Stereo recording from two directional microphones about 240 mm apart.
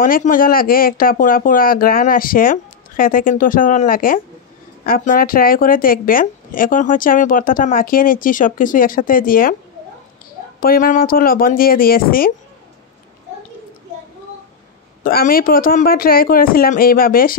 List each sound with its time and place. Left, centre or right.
0.0 s a woman's voice: left
10.6 s a woman's voice: left
15.0 s a woman's voice: left